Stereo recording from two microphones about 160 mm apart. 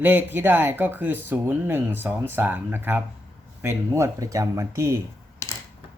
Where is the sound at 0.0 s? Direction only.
15° right (ahead or behind).